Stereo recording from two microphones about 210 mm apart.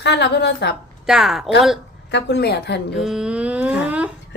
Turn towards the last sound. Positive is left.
turn(degrees=-5)  # may be behind; listen again after turning